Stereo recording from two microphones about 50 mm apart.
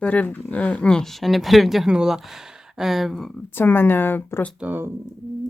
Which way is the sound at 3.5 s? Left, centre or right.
Left.